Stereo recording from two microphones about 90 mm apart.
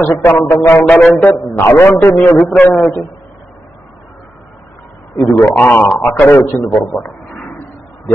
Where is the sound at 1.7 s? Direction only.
30° left (ahead or behind).